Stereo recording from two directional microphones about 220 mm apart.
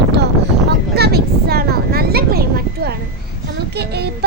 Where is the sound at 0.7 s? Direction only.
45° right (ahead or behind).